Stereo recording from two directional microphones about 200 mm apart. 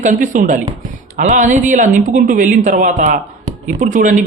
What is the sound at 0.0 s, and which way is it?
Speech, 40° right (ahead or behind).